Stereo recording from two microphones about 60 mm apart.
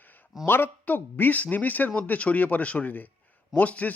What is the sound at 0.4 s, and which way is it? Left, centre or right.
Speech, left.